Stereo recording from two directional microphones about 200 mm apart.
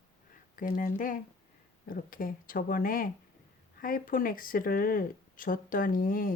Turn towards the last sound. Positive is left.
turn(degrees=45)  # may be behind; listen again after turning